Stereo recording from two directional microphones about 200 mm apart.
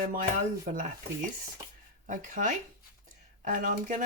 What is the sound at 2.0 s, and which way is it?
Speech, 40° right (ahead or behind).